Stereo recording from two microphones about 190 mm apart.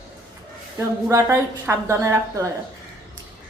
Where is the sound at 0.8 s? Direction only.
15° right (ahead or behind).